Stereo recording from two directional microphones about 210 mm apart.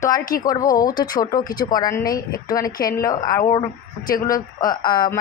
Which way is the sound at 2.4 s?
15° left (ahead or behind).